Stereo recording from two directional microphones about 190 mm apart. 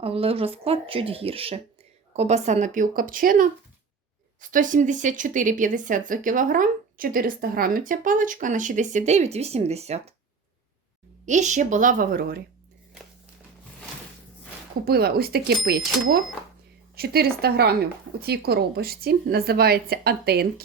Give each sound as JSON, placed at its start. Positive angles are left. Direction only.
{"t": 0.0, "sound": "speech", "side_deg": -30}
{"t": 11.3, "sound": "speech", "side_deg": -40}
{"t": 14.8, "sound": "a woman's voice", "side_deg": -55}